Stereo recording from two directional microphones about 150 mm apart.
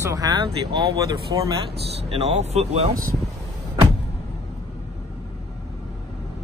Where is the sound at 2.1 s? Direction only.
45° right (ahead or behind).